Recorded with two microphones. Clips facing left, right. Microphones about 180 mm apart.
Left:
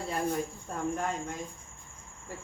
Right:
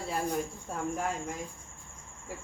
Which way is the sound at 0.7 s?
5° right (ahead or behind).